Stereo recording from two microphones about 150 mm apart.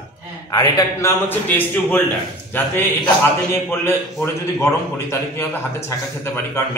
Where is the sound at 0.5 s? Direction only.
25° left (ahead or behind).